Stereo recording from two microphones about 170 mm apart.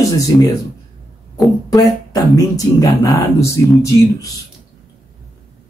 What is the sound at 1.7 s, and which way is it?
Speech, 20° left (ahead or behind).